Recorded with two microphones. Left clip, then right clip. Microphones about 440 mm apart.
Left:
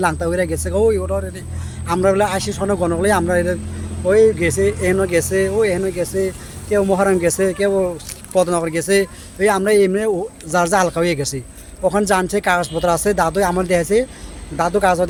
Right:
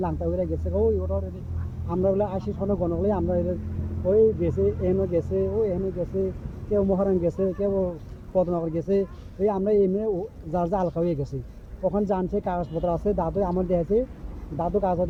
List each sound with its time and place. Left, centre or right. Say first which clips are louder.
0.0 s a man's voice: left 9 dB; right